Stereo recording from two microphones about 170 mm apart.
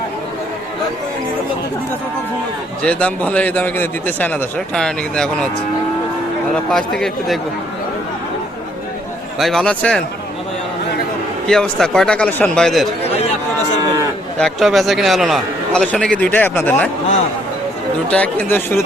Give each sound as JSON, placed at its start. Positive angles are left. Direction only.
{"t": 2.8, "sound": "a man's voice", "side_deg": 5}
{"t": 6.7, "sound": "a man's voice", "side_deg": 0}
{"t": 9.4, "sound": "a man's voice", "side_deg": 0}
{"t": 11.4, "sound": "a man's voice", "side_deg": 5}
{"t": 13.0, "sound": "chatter", "side_deg": 40}
{"t": 14.3, "sound": "a man's voice", "side_deg": 0}
{"t": 18.1, "sound": "a man's voice", "side_deg": 10}